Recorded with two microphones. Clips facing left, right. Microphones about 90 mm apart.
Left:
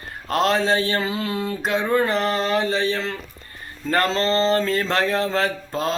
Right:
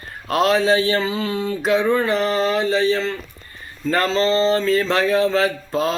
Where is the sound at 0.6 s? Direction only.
35° left (ahead or behind).